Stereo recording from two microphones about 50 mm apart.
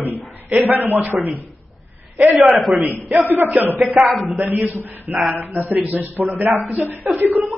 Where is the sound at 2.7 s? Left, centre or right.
Right.